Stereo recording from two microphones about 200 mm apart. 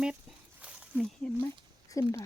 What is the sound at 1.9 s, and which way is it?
Speech, 15° left (ahead or behind).